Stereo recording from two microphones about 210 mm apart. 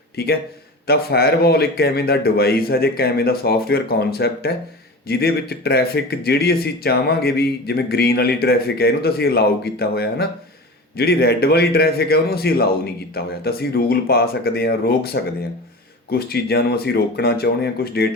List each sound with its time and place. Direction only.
0.2 s speech: 45° left (ahead or behind)